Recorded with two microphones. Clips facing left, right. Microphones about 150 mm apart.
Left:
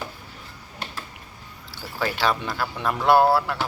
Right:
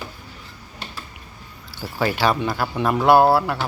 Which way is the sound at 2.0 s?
5° right (ahead or behind).